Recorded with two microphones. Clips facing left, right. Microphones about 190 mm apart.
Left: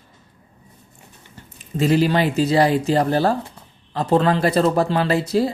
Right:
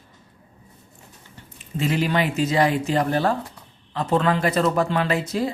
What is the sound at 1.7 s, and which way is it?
Speech, 35° left (ahead or behind).